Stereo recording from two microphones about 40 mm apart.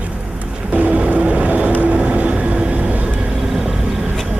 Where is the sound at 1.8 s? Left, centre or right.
Right.